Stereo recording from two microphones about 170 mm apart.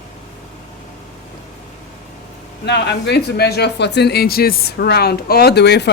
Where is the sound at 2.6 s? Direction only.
85° left.